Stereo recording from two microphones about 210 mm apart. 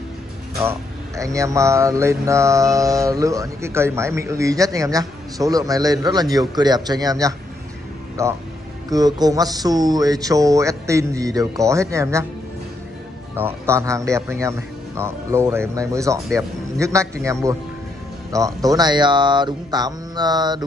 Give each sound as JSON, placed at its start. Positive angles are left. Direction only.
{"t": 0.6, "sound": "speech", "side_deg": -15}
{"t": 13.4, "sound": "speech", "side_deg": -10}